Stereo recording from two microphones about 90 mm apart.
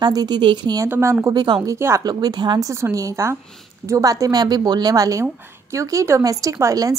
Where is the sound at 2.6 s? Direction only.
35° right (ahead or behind).